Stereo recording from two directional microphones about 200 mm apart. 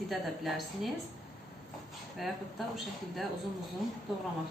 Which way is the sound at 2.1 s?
Centre (ahead or behind).